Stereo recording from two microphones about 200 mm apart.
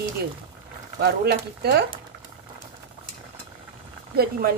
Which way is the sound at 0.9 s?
55° right (ahead or behind).